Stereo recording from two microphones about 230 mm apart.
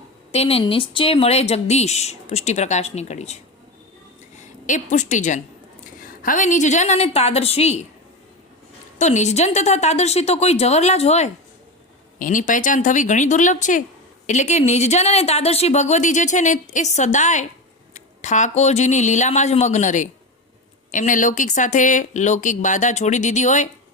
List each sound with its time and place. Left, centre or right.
0.3 s a woman's voice: left
9.0 s a woman's voice: left